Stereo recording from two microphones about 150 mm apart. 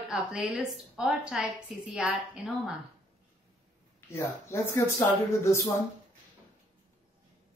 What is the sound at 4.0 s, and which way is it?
Speech, 15° left (ahead or behind).